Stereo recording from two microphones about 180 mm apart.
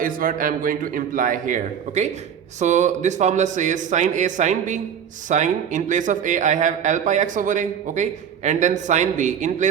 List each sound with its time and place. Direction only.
0.0 s a man's voice: 50° right (ahead or behind)